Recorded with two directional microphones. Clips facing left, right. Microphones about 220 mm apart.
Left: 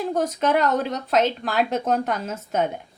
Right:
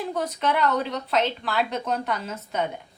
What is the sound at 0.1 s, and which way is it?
A woman's voice, 45° left (ahead or behind).